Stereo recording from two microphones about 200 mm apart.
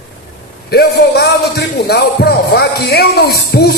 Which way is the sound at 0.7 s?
55° left (ahead or behind).